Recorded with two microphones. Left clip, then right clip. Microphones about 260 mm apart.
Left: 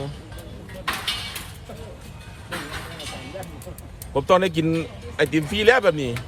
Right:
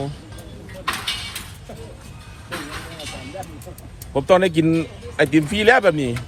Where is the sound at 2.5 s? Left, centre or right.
Left.